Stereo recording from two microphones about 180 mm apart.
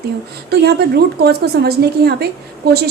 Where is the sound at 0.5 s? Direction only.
60° right (ahead or behind).